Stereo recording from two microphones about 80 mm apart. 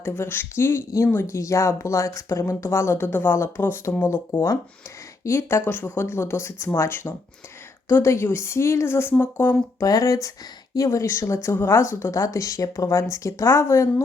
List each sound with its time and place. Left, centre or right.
0.0 s speech: left
9.8 s speech: left